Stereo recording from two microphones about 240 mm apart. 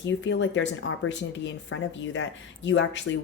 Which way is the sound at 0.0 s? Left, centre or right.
Left.